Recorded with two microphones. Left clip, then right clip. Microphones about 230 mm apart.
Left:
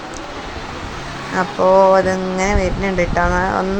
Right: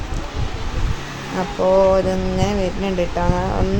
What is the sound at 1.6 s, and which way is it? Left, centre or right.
A woman's voice, centre.